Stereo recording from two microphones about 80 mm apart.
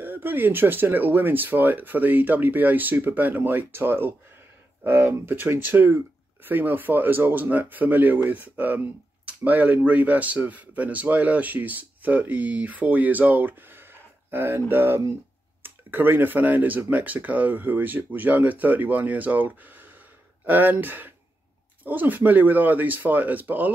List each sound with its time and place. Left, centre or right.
0.0 s speech: right